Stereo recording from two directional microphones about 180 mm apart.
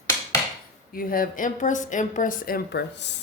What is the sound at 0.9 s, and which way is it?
Speech, 50° left (ahead or behind).